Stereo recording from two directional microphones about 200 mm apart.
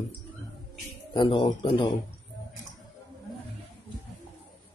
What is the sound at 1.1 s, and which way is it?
Speech, 25° left (ahead or behind).